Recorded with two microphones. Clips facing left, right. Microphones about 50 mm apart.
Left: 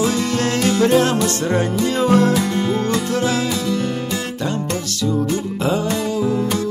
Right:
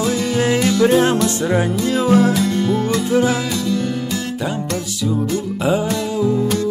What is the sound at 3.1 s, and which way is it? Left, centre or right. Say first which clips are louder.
Music: right 3 dB; centre.